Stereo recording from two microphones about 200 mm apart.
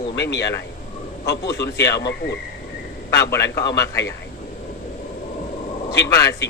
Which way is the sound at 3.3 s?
15° left (ahead or behind).